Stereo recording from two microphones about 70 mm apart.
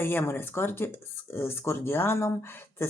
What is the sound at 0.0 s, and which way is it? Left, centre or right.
Speech, left.